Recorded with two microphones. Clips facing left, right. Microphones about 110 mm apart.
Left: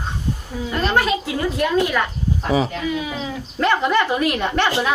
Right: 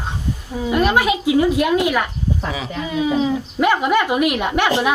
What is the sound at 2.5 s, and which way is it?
Speech, 30° left (ahead or behind).